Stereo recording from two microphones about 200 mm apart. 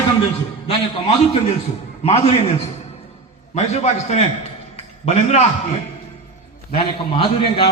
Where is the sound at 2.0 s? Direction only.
30° left (ahead or behind).